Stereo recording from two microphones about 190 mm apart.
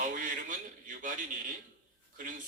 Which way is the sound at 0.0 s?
45° right (ahead or behind).